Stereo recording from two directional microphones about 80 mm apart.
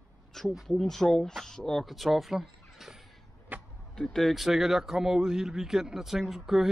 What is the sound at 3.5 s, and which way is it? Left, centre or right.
Vehicle, right.